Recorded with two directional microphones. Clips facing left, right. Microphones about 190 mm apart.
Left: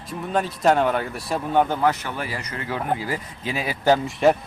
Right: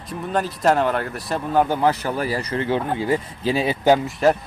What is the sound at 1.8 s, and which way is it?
Speech, 35° right (ahead or behind).